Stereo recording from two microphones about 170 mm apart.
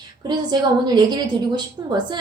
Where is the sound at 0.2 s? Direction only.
25° right (ahead or behind).